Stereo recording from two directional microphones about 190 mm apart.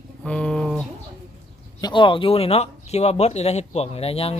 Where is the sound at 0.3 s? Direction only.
5° left (ahead or behind).